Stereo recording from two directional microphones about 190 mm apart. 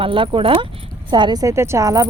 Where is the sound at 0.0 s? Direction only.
25° right (ahead or behind).